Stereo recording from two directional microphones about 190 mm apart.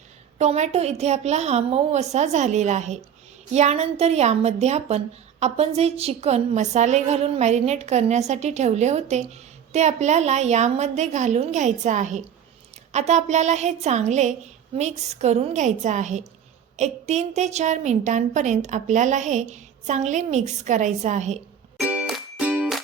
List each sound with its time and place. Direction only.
0.3 s a woman's voice: 35° right (ahead or behind)
21.8 s music: 5° right (ahead or behind)